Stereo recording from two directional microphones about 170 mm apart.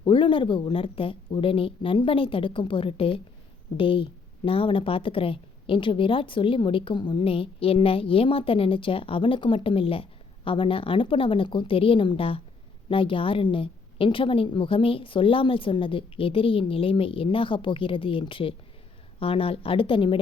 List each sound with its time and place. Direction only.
0.0 s a woman's voice: 30° left (ahead or behind)